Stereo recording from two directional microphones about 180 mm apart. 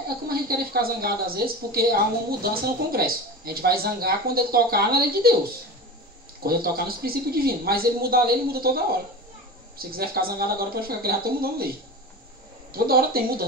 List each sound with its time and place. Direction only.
0.3 s speech: 55° right (ahead or behind)
6.4 s speech: 55° right (ahead or behind)
12.7 s speech: 55° right (ahead or behind)